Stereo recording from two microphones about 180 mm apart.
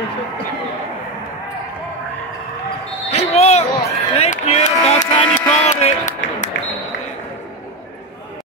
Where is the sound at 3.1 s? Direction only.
35° left (ahead or behind).